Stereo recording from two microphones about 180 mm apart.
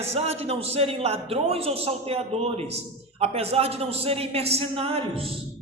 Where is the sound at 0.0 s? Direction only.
35° right (ahead or behind).